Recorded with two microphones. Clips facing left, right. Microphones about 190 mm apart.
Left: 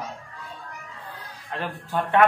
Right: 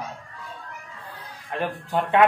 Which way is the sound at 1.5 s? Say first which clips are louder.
Right 3 dB; 15° right (ahead or behind).